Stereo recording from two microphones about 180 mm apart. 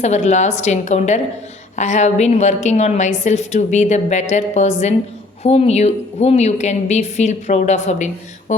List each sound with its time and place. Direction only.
0.0 s a woman's voice: 40° left (ahead or behind)